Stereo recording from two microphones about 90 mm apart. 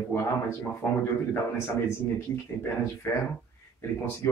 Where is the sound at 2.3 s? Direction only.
30° left (ahead or behind).